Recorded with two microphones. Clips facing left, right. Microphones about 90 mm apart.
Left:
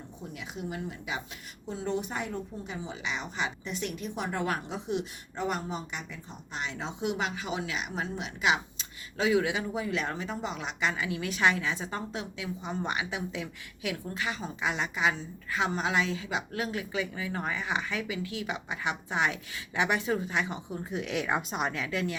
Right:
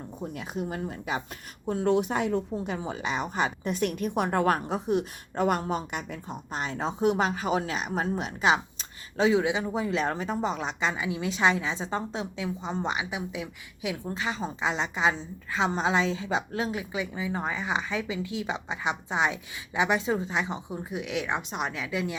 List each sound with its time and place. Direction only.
0.2 s speech: 50° right (ahead or behind)
1.6 s speech: 60° right (ahead or behind); by 5.0 s 45° right (ahead or behind)
5.4 s a woman's voice: 70° right (ahead or behind)
6.6 s speech: 40° right (ahead or behind); by 13.9 s 15° right (ahead or behind)
14.1 s speech: 25° right (ahead or behind)
20.9 s a woman's voice: 5° right (ahead or behind)